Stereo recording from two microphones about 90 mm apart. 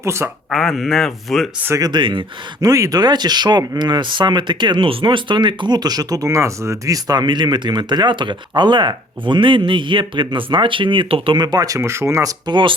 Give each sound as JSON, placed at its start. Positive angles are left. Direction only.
{"t": 0.0, "sound": "speech", "side_deg": -30}
{"t": 0.5, "sound": "speech", "side_deg": 5}
{"t": 1.7, "sound": "speech", "side_deg": -45}
{"t": 2.0, "sound": "speech", "side_deg": -65}
{"t": 2.6, "sound": "speech", "side_deg": -40}
{"t": 3.0, "sound": "speech", "side_deg": -50}
{"t": 11.3, "sound": "speech", "side_deg": -50}
{"t": 11.8, "sound": "speech", "side_deg": -30}
{"t": 12.5, "sound": "speech", "side_deg": -65}